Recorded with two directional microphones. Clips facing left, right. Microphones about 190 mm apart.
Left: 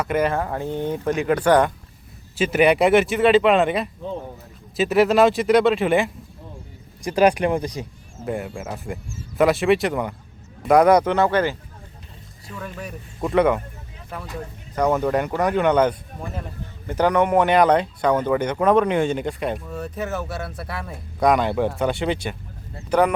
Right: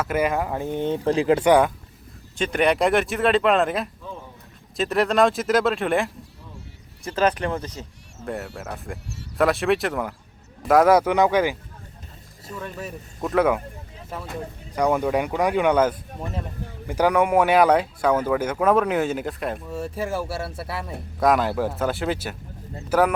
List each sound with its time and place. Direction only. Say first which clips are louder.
0.0 s speech: left 1 dB; 5° right (ahead or behind)
1.0 s speech: right 2 dB; 30° right (ahead or behind)
1.5 s speech: left 1 dB; 10° right (ahead or behind)
2.3 s speech: left 4 dB; 5° left (ahead or behind)
7.0 s speech: left 5 dB; 15° left (ahead or behind)
8.2 s speech: left 3 dB; centre (ahead or behind)
12.5 s speech: even; centre (ahead or behind)
14.8 s speech: left 1 dB; 10° right (ahead or behind)